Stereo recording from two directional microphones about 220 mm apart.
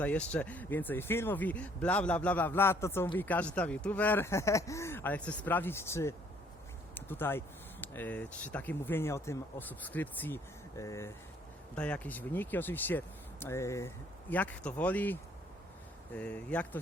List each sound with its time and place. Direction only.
0.0 s speech: 5° left (ahead or behind)